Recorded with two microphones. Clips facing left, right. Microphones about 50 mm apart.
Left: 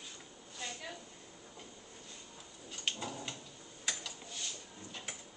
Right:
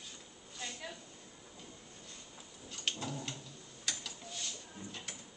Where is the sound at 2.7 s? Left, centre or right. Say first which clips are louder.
Even; centre.